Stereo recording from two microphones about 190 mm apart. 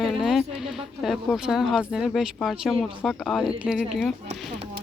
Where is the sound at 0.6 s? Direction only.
Centre (ahead or behind).